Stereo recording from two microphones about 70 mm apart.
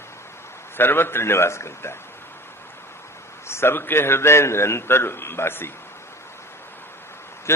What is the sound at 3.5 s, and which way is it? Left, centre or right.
A man's voice, left.